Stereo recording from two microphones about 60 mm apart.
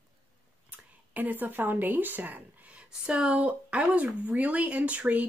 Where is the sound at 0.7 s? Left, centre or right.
Right.